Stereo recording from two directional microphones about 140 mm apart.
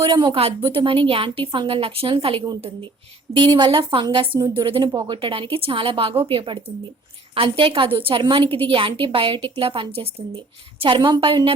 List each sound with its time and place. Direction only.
0.0 s a woman's voice: 35° right (ahead or behind)